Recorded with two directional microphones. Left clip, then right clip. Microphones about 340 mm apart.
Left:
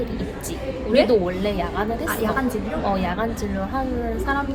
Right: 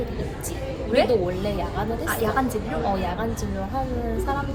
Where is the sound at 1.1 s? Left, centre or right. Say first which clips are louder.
Left 3 dB; left.